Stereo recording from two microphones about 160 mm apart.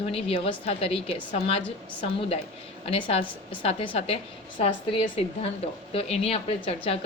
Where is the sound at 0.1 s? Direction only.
35° left (ahead or behind).